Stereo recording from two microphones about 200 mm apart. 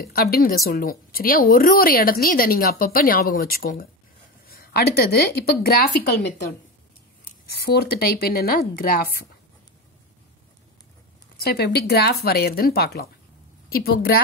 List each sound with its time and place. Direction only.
0.0 s a woman's voice: 50° left (ahead or behind)
7.4 s a woman's voice: 50° left (ahead or behind)
11.3 s a woman's voice: 50° left (ahead or behind)